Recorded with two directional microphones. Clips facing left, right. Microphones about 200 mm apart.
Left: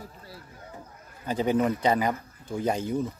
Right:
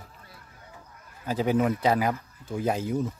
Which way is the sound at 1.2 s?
5° right (ahead or behind).